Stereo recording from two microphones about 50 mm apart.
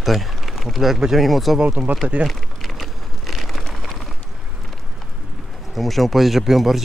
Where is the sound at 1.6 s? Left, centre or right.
Right.